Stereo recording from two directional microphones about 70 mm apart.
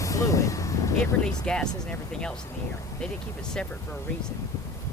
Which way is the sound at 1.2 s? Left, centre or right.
Centre.